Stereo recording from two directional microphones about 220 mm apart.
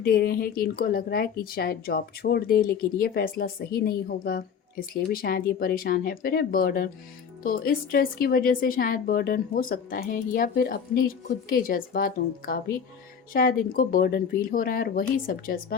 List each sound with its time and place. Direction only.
0.0 s speech: 45° left (ahead or behind)